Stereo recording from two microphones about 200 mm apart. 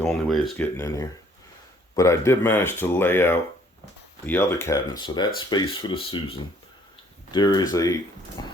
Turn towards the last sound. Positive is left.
turn(degrees=20)  # may be behind; listen again after turning